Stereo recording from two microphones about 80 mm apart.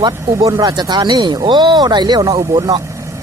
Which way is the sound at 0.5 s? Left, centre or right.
Right.